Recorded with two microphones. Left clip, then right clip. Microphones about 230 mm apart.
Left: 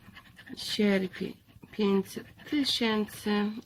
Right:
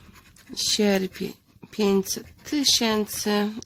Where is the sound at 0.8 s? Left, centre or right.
Right.